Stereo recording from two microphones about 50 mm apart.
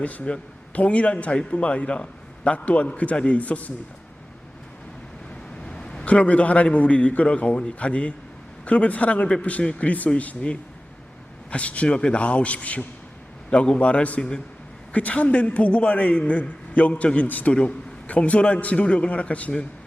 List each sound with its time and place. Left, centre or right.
0.0 s a man's voice: left
5.6 s a sound: centre
6.1 s a man's voice: left